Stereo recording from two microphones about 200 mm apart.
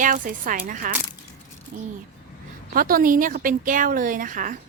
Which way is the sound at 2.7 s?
45° right (ahead or behind).